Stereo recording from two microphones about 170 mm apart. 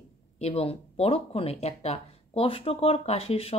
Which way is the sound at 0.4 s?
35° left (ahead or behind).